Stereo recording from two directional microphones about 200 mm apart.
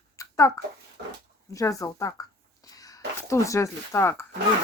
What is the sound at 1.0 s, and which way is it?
Dog, 50° right (ahead or behind).